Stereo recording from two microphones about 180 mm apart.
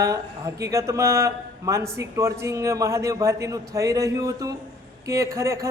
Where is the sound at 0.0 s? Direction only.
20° right (ahead or behind).